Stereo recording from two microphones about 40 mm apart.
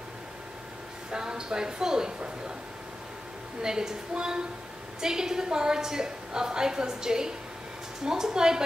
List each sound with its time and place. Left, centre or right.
1.1 s a woman's voice: centre
3.6 s a woman's voice: centre